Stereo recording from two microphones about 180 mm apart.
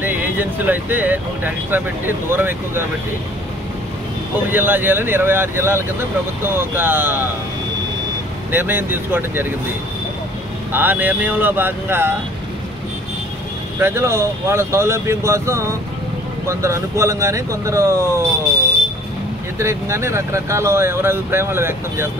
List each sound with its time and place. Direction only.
0.0 s speech: 10° right (ahead or behind)
4.5 s speech: 10° right (ahead or behind)
8.5 s speech: 10° right (ahead or behind)
10.7 s speech: 10° right (ahead or behind)
13.7 s speech: 15° right (ahead or behind)
19.6 s speech: 15° right (ahead or behind)